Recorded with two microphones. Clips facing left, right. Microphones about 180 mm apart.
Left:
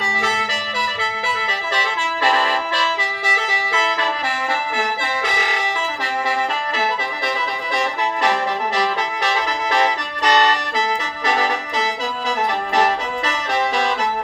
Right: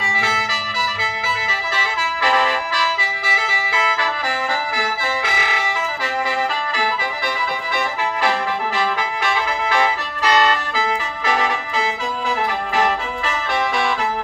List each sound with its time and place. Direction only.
0.2 s music: 35° left (ahead or behind)
10.2 s music: 35° left (ahead or behind)